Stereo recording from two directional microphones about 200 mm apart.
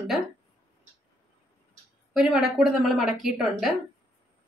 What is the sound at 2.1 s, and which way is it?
A woman's voice, 5° right (ahead or behind).